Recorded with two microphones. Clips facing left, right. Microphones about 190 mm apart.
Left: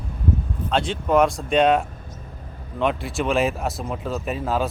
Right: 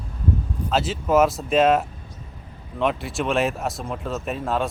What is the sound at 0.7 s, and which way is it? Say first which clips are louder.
Speech: even; 5° right (ahead or behind).